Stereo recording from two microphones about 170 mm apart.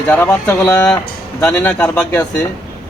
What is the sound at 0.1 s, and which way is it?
Speech, 15° left (ahead or behind).